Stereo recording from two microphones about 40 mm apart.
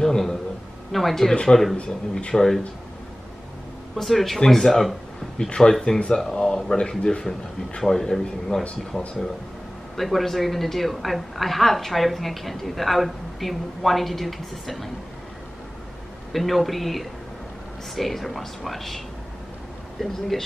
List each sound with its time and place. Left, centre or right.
0.0 s a man's voice: centre
1.3 s a man's voice: left
3.9 s a woman's voice: centre
8.9 s speech: left
9.9 s a woman's voice: centre
16.3 s a woman's voice: centre
20.0 s a man's voice: centre